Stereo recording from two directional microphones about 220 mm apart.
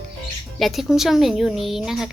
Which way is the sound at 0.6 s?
Centre (ahead or behind).